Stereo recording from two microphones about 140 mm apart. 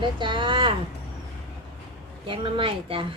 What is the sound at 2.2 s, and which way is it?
Speech, 40° right (ahead or behind).